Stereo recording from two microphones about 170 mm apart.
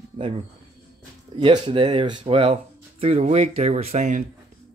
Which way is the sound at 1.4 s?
30° right (ahead or behind).